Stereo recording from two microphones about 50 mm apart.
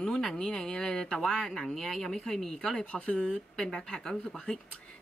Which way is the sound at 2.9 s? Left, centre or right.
Left.